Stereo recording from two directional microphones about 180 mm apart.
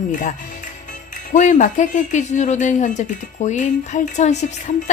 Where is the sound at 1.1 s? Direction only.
45° left (ahead or behind).